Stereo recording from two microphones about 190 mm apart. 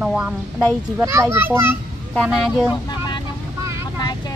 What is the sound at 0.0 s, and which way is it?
A child's voice, 5° right (ahead or behind).